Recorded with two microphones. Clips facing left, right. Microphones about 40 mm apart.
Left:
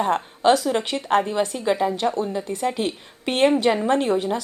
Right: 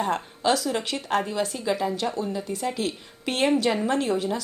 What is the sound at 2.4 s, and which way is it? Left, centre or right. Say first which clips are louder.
Speech: left 3 dB; left.